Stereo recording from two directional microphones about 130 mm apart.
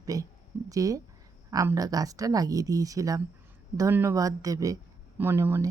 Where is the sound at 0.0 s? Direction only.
25° right (ahead or behind).